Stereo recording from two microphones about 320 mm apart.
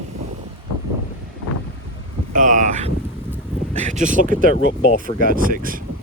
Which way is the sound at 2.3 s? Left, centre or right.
Right.